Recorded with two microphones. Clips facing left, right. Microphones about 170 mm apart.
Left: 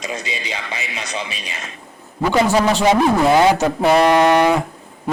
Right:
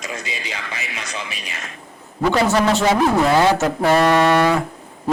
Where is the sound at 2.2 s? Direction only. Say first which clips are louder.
Left 1 dB; 10° left (ahead or behind).